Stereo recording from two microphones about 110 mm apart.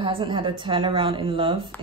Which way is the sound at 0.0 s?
50° right (ahead or behind).